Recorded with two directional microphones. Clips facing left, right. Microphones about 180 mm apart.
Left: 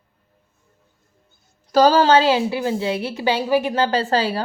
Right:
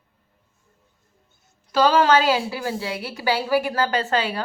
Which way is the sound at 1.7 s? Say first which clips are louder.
Left 3 dB; 40° left (ahead or behind).